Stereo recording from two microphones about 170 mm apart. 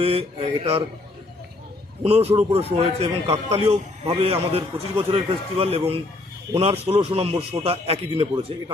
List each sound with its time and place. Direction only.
0.0 s a man's voice: 35° right (ahead or behind)
2.0 s a man's voice: 40° right (ahead or behind)